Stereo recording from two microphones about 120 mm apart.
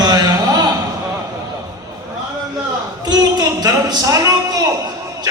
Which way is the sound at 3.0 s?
35° right (ahead or behind).